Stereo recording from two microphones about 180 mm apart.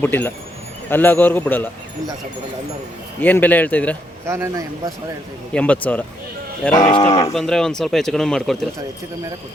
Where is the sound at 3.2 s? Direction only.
10° left (ahead or behind).